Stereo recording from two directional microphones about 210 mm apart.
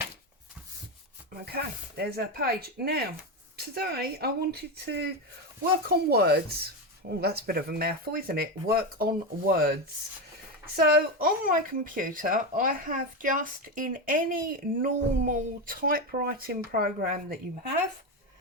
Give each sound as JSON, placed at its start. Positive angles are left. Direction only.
{"t": 1.5, "sound": "speech", "side_deg": -50}
{"t": 10.8, "sound": "speech", "side_deg": -45}